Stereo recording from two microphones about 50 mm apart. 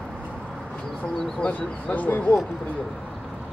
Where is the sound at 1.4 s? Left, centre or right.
Left.